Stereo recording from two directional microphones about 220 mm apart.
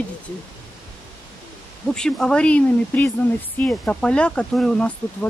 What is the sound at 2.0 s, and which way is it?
Speech, 5° left (ahead or behind).